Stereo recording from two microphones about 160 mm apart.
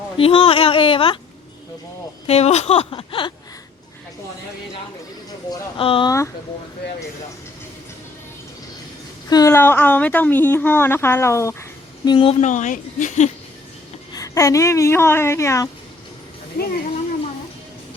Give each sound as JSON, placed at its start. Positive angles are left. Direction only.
{"t": 0.2, "sound": "speech", "side_deg": 35}
{"t": 2.2, "sound": "speech", "side_deg": 40}
{"t": 5.5, "sound": "speech", "side_deg": 35}
{"t": 6.1, "sound": "a woman's voice", "side_deg": 20}
{"t": 9.3, "sound": "speech", "side_deg": 20}
{"t": 12.0, "sound": "speech", "side_deg": 30}
{"t": 12.4, "sound": "a woman's voice", "side_deg": 50}
{"t": 14.1, "sound": "a woman's voice", "side_deg": 20}